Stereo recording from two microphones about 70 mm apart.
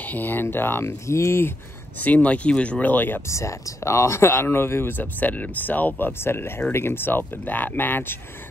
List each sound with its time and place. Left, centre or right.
0.0 s speech: left
2.0 s speech: left
3.3 s speech: left